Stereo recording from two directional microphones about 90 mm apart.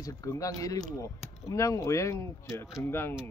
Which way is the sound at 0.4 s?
40° left (ahead or behind).